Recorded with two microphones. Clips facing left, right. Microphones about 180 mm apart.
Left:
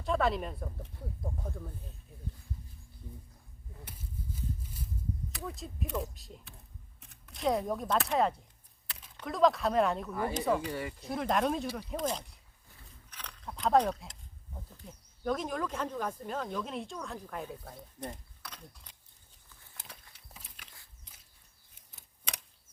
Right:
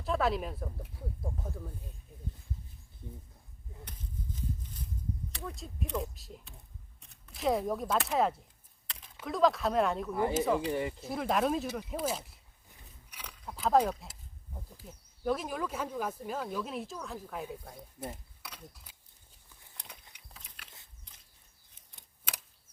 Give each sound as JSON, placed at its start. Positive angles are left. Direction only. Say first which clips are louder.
{"t": 0.0, "sound": "speech", "louder": "left 1 dB", "side_deg": 0}
{"t": 3.8, "sound": "a sound", "louder": "even", "side_deg": 10}
{"t": 5.3, "sound": "speech", "louder": "left 1 dB", "side_deg": 0}
{"t": 10.1, "sound": "speech", "louder": "right 2 dB", "side_deg": -20}
{"t": 11.0, "sound": "speech", "louder": "left 2 dB", "side_deg": 0}
{"t": 12.7, "sound": "a sound", "louder": "left 1 dB", "side_deg": -10}
{"t": 14.8, "sound": "speech", "louder": "even", "side_deg": -5}
{"t": 19.8, "sound": "a sound", "louder": "even", "side_deg": 5}
{"t": 20.3, "sound": "biting", "louder": "left 1 dB", "side_deg": 10}
{"t": 22.3, "sound": "typewriter", "louder": "even", "side_deg": -5}